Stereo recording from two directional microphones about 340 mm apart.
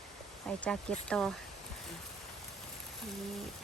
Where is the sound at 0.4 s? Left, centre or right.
Centre.